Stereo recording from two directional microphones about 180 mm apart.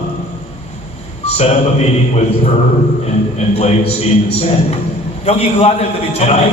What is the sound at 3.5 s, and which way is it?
A man's voice, 35° left (ahead or behind).